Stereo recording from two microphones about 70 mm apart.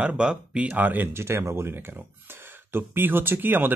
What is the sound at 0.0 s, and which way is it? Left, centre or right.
Speech, centre.